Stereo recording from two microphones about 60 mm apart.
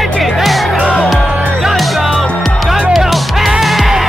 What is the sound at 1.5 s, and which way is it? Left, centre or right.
Music, centre.